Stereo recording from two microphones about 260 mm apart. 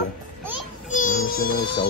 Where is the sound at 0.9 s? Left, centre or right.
Left.